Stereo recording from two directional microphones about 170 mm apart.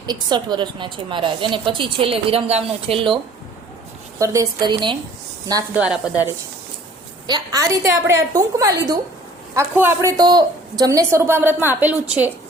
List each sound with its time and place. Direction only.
0.0 s a woman's voice: 25° right (ahead or behind)
4.2 s a woman's voice: 20° right (ahead or behind)
5.7 s a woman's voice: 5° right (ahead or behind)
7.3 s a woman's voice: 25° right (ahead or behind)